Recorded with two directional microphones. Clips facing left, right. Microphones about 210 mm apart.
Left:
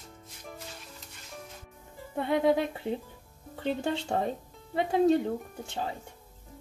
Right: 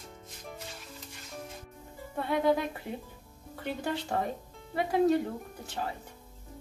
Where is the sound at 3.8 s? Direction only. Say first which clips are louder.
Even; 25° left (ahead or behind).